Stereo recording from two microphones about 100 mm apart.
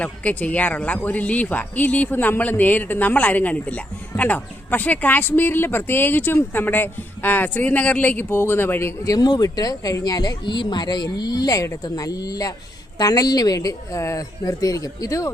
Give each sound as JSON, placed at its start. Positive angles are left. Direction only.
{"t": 0.0, "sound": "speech", "side_deg": 15}
{"t": 9.0, "sound": "speech", "side_deg": 40}